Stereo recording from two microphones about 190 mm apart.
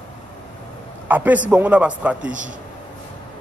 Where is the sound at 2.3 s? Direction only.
40° right (ahead or behind).